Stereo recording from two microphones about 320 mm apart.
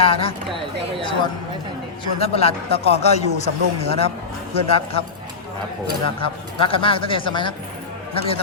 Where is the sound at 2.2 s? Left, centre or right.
Centre.